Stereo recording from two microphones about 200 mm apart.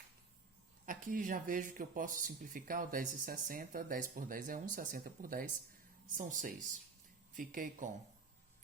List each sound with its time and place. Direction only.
0.9 s speech: 45° right (ahead or behind)